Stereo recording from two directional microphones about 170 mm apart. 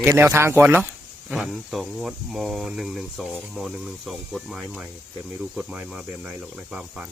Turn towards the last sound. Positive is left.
turn(degrees=-5)  # may be behind; listen again after turning